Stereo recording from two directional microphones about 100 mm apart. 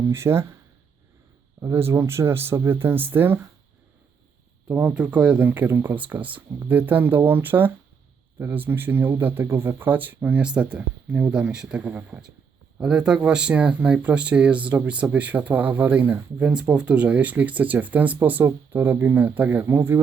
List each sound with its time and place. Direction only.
0.1 s speech: 25° right (ahead or behind)
1.6 s speech: 25° right (ahead or behind)
4.7 s speech: 15° right (ahead or behind)